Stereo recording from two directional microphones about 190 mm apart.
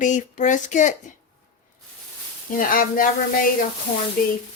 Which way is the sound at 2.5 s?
45° left (ahead or behind).